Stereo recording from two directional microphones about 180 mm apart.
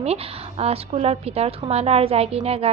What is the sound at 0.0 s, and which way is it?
A woman's voice, 35° right (ahead or behind).